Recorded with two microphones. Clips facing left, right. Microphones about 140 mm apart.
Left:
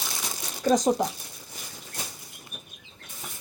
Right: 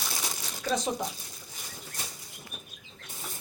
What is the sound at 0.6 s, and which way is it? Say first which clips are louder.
Speech: left 8 dB; 40° left (ahead or behind).